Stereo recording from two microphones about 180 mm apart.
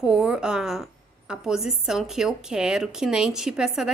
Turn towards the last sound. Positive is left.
turn(degrees=0)  # may be behind; listen again after turning